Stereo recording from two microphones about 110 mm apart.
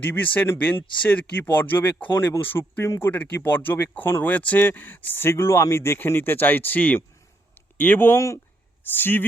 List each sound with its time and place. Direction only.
0.0 s speech: 15° left (ahead or behind)